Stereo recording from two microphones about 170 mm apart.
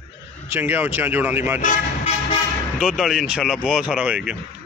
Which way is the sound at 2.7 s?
5° right (ahead or behind).